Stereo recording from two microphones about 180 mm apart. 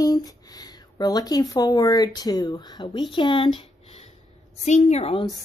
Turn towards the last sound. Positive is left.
turn(degrees=35)  # may be behind; listen again after turning